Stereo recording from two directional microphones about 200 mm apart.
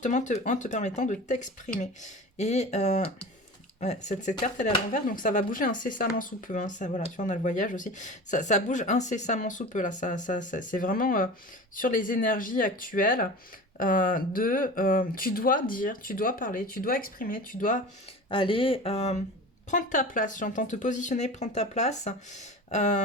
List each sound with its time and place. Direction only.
0.0 s speech: 35° left (ahead or behind)
18.3 s speech: 25° left (ahead or behind)